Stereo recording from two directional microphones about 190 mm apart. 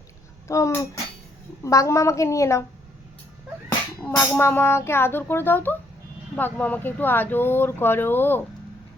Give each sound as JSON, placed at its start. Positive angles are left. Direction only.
{"t": 0.4, "sound": "speech", "side_deg": 15}
{"t": 4.2, "sound": "speech", "side_deg": 10}